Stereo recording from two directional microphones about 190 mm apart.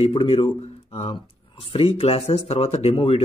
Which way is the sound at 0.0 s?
30° left (ahead or behind).